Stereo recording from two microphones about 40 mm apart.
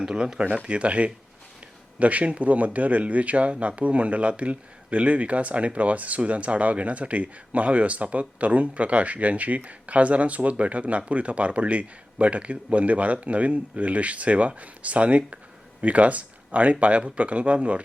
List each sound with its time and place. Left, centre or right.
0.2 s speech: right